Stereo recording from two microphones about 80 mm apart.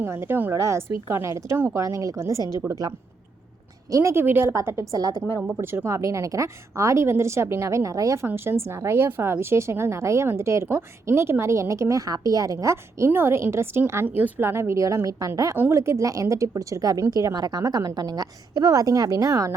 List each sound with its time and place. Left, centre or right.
0.0 s a woman's voice: right
0.5 s a woman's voice: right
2.6 s a woman's voice: right
4.1 s a woman's voice: right
4.5 s a woman's voice: right
4.9 s a woman's voice: right
5.5 s a woman's voice: right
8.3 s a woman's voice: right